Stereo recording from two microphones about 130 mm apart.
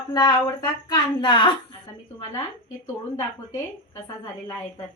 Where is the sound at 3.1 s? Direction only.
25° left (ahead or behind).